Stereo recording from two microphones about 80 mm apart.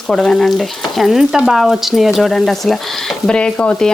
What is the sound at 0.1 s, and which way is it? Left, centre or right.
Speech, centre.